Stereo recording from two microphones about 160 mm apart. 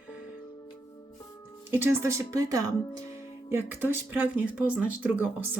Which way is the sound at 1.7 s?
15° right (ahead or behind).